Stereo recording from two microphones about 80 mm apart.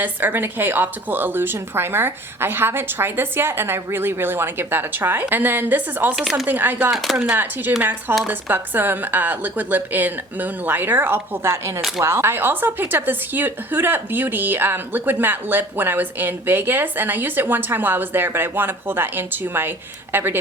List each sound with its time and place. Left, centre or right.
0.0 s a woman's voice: right
6.1 s speech: centre
6.5 s a woman's voice: right
6.9 s speech: centre
7.2 s a woman's voice: right